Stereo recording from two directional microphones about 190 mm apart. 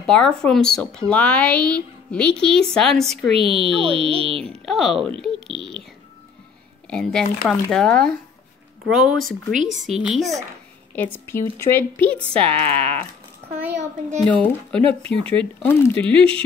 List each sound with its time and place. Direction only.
0.0 s speech: 5° left (ahead or behind)
3.3 s speech: 30° right (ahead or behind)
4.5 s speech: centre (ahead or behind)
6.9 s speech: 5° left (ahead or behind)
9.6 s speech: 40° right (ahead or behind)
10.0 s speech: centre (ahead or behind)
11.0 s speech: 10° left (ahead or behind)
14.2 s speech: 5° left (ahead or behind)